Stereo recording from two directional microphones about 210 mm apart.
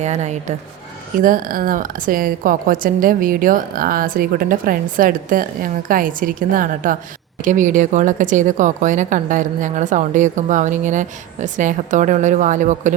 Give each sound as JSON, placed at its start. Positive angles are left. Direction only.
{"t": 0.0, "sound": "a woman's voice", "side_deg": -35}